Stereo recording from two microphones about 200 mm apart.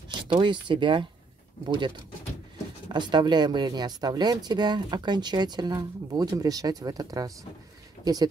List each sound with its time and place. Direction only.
0.3 s speech: 25° right (ahead or behind)
2.9 s speech: 20° right (ahead or behind)